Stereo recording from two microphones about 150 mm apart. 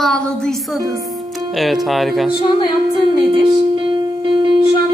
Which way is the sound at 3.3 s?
35° right (ahead or behind).